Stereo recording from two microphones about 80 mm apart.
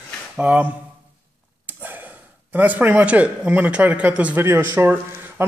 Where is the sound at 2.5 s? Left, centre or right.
Right.